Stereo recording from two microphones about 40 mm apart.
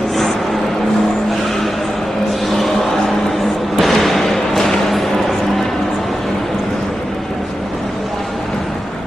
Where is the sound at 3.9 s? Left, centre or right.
Centre.